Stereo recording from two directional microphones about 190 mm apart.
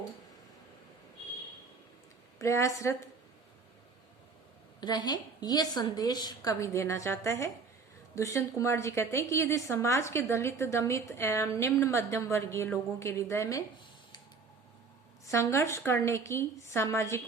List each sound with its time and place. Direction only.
2.4 s a woman's voice: 15° left (ahead or behind)
4.8 s a woman's voice: 20° left (ahead or behind)
15.3 s a woman's voice: 15° left (ahead or behind)